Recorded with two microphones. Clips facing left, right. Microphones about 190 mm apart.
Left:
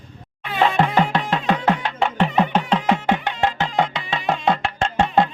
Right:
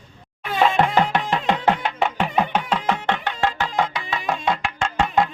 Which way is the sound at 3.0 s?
15° left (ahead or behind).